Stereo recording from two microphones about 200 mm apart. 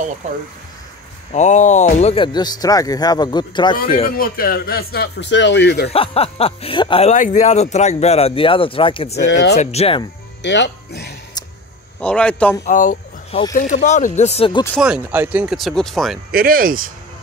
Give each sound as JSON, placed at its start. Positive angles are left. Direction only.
{"t": 1.3, "sound": "speech", "side_deg": 35}
{"t": 4.2, "sound": "speech", "side_deg": 45}
{"t": 5.9, "sound": "speech", "side_deg": 30}
{"t": 9.1, "sound": "speech", "side_deg": 60}
{"t": 9.6, "sound": "speech", "side_deg": 30}
{"t": 10.4, "sound": "speech", "side_deg": 60}
{"t": 12.0, "sound": "speech", "side_deg": 5}
{"t": 12.6, "sound": "speech", "side_deg": 40}
{"t": 14.8, "sound": "speech", "side_deg": -5}
{"t": 16.3, "sound": "speech", "side_deg": -45}